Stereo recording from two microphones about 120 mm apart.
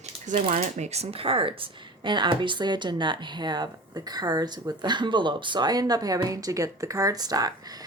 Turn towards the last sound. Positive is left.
turn(degrees=-35)  # may be behind; listen again after turning